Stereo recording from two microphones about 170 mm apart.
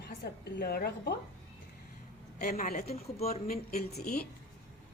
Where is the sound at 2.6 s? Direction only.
40° left (ahead or behind).